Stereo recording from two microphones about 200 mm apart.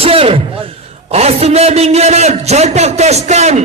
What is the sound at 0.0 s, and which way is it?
A man's voice, 30° right (ahead or behind).